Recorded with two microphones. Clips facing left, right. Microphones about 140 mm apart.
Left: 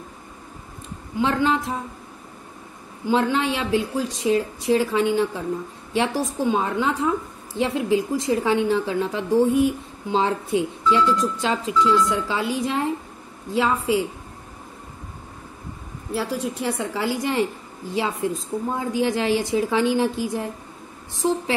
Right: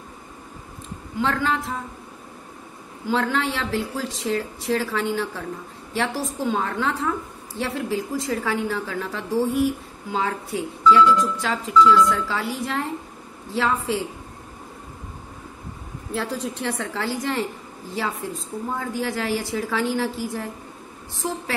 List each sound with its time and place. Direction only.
1.2 s a woman's voice: 15° left (ahead or behind)
3.1 s a woman's voice: 15° left (ahead or behind)
16.1 s a woman's voice: 10° left (ahead or behind)